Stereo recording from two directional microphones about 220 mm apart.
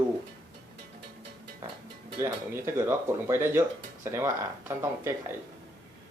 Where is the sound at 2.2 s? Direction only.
10° right (ahead or behind).